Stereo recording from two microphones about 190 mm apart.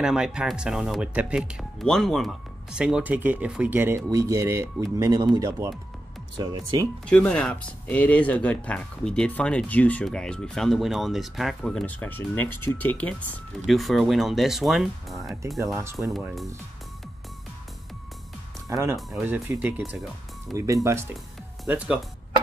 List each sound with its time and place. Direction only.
0.0 s speech: 5° right (ahead or behind); by 6.9 s 20° right (ahead or behind)
7.1 s speech: 5° left (ahead or behind)
15.6 s speech: 15° right (ahead or behind)
16.1 s speech: centre (ahead or behind)
18.7 s speech: 15° right (ahead or behind)
18.9 s speech: 5° right (ahead or behind)
20.5 s speech: 15° right (ahead or behind)